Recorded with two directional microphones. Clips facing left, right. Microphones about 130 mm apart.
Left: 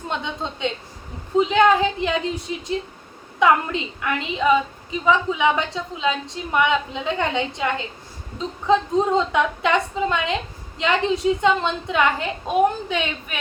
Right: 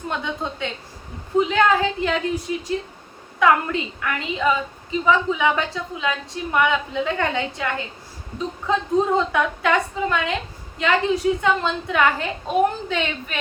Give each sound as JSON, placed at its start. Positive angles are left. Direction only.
{"t": 0.1, "sound": "a woman's voice", "side_deg": 20}